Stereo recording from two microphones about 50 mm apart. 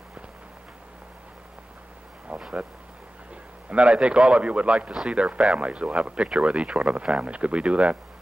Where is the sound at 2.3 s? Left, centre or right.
Right.